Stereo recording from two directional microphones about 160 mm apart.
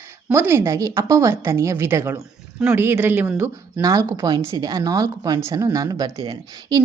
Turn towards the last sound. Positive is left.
turn(degrees=-25)  # may be behind; listen again after turning